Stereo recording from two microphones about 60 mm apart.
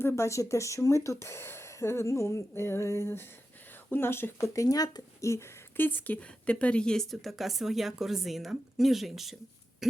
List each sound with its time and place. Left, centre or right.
0.2 s speech: left
4.4 s speech: left
5.7 s speech: left
6.1 s speech: left; by 9.3 s centre